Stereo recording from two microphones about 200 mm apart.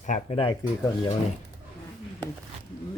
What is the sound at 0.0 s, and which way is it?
Speech, 35° left (ahead or behind).